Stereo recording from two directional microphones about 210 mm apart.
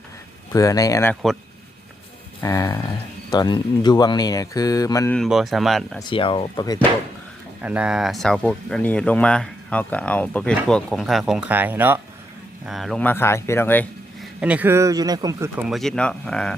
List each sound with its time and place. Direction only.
0.5 s speech: 15° left (ahead or behind)
2.4 s speech: 15° left (ahead or behind)
5.1 s speech: centre (ahead or behind)
6.1 s speech: 25° left (ahead or behind)
7.6 s speech: 5° right (ahead or behind)
14.4 s speech: 5° right (ahead or behind)